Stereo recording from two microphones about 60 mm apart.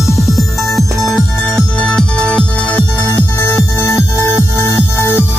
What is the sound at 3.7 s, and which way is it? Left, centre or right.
Music, left.